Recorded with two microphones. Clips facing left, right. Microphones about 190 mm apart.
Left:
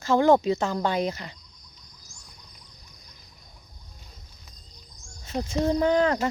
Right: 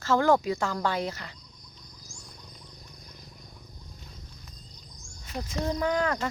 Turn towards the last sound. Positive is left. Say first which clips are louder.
# left 6 dB
turn(degrees=25)  # may be behind; listen again after turning